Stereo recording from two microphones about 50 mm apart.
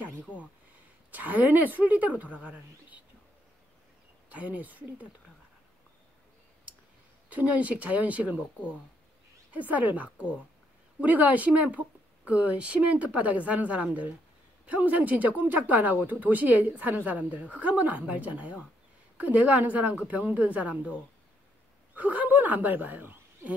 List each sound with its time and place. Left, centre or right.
1.1 s speech: right
4.3 s speech: right
7.2 s speech: right
8.4 s speech: left
9.5 s a woman's voice: right
21.9 s speech: right